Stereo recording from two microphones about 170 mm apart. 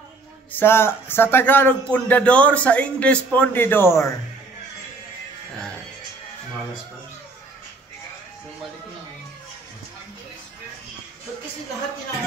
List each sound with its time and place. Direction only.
0.5 s speech: 10° left (ahead or behind)